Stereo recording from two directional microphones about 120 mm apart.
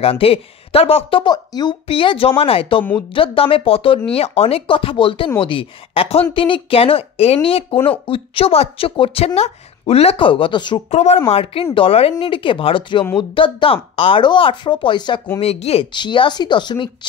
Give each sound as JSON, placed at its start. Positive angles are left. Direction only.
{"t": 0.0, "sound": "speech", "side_deg": 55}
{"t": 1.3, "sound": "speech", "side_deg": 35}
{"t": 1.9, "sound": "speech", "side_deg": 50}
{"t": 10.9, "sound": "speech", "side_deg": 65}
{"t": 11.2, "sound": "speech", "side_deg": 50}
{"t": 15.4, "sound": "speech", "side_deg": 60}
{"t": 15.9, "sound": "speech", "side_deg": 40}